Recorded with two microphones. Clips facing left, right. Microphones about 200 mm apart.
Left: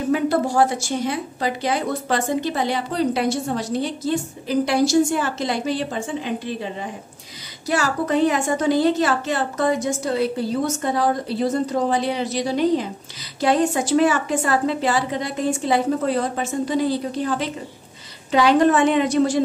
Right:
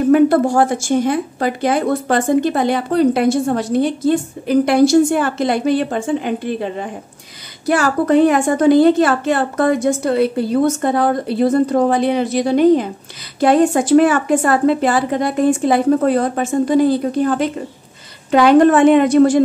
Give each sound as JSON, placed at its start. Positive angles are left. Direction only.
{"t": 0.1, "sound": "a woman's voice", "side_deg": -55}